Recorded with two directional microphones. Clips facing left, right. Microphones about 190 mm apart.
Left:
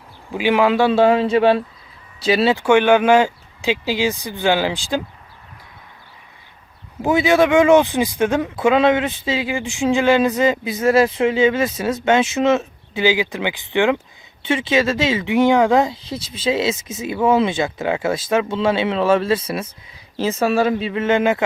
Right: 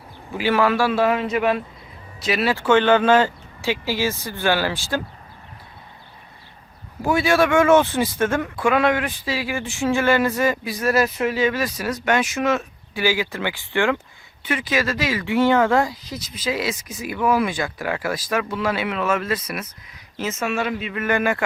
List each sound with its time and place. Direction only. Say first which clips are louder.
0.3 s speech: left 3 dB; 15° left (ahead or behind)
2.6 s speech: left 2 dB; 10° left (ahead or behind)
7.0 s speech: left 3 dB; 20° left (ahead or behind)